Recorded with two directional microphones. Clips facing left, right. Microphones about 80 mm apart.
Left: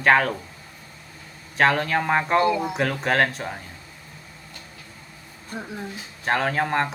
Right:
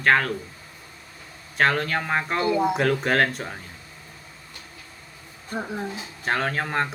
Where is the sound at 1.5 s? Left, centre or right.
Centre.